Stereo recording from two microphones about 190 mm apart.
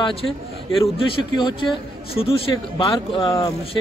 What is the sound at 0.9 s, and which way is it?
A man's voice, 25° left (ahead or behind).